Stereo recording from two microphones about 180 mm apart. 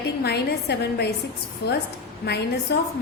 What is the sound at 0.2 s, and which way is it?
A woman's voice, 65° left (ahead or behind).